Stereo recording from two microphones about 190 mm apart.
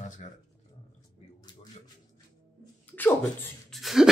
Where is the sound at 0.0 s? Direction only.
40° left (ahead or behind).